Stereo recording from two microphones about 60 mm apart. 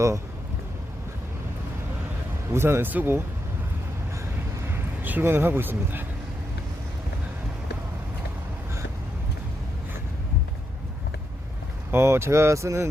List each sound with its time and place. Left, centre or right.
2.5 s speech: right
4.6 s a sound: right
5.2 s speech: right
11.9 s speech: right